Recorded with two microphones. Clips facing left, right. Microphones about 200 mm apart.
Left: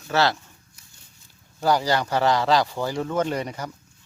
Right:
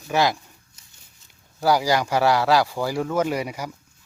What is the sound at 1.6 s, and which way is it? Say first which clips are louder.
Speech: right 2 dB; 10° right (ahead or behind).